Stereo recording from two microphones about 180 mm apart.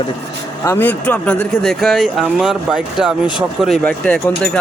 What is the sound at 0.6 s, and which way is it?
Speech, 10° left (ahead or behind).